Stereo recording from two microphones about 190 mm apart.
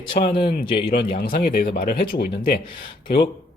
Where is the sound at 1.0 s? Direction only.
50° left (ahead or behind).